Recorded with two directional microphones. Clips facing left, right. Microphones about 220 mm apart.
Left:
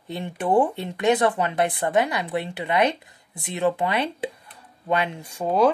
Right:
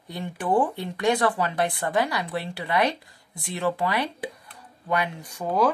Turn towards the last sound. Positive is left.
turn(degrees=25)  # may be behind; listen again after turning